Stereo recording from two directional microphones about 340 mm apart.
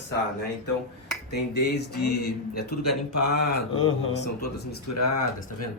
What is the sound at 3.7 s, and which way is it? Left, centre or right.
Speech, centre.